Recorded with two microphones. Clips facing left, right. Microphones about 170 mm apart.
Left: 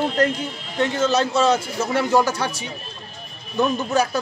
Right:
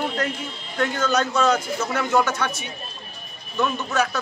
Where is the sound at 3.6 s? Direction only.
35° left (ahead or behind).